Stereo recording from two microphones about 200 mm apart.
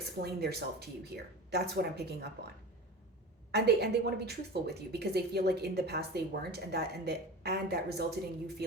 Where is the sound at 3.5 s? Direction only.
55° right (ahead or behind).